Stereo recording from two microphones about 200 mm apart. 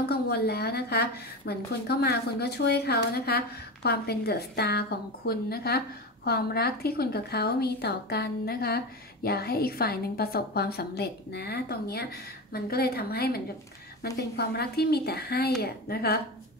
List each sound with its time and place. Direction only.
0.0 s a woman's voice: 55° left (ahead or behind)